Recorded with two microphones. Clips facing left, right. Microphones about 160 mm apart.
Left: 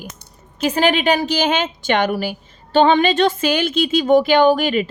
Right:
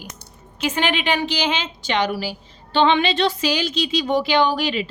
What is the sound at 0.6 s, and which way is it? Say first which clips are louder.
A woman's voice: left 5 dB; 40° left (ahead or behind).